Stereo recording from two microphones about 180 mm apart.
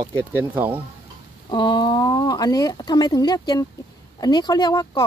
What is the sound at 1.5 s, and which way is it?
Speech, 25° left (ahead or behind).